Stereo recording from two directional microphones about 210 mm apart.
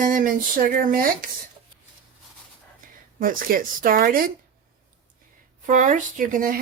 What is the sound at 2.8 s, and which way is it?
Speech, 40° right (ahead or behind).